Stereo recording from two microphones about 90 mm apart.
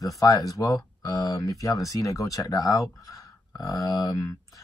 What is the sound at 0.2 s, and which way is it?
Speech, 40° left (ahead or behind).